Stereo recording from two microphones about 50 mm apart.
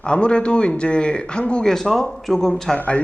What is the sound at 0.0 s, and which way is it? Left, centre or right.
Speech, left.